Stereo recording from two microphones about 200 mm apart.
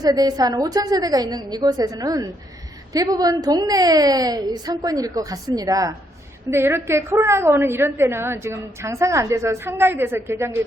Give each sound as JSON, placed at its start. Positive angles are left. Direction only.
{"t": 0.0, "sound": "a woman's voice", "side_deg": -20}